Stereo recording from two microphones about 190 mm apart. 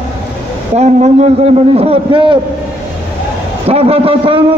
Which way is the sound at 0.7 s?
35° right (ahead or behind).